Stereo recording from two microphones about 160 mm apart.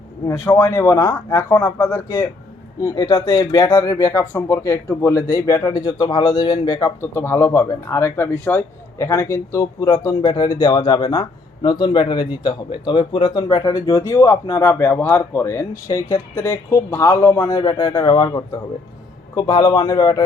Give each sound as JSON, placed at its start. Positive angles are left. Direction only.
{"t": 0.6, "sound": "speech", "side_deg": 20}